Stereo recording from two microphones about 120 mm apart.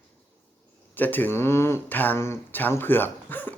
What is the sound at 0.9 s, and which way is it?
Speech, 15° left (ahead or behind).